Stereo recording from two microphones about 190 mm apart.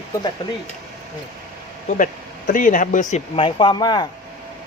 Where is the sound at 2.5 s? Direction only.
45° left (ahead or behind); by 4.1 s 20° left (ahead or behind).